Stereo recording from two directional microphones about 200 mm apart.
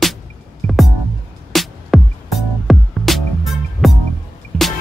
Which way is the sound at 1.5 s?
Centre (ahead or behind).